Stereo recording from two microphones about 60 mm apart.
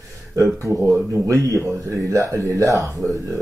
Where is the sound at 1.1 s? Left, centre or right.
Right.